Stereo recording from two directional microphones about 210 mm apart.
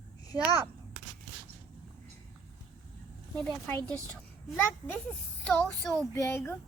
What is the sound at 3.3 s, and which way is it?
A child's voice, 5° left (ahead or behind).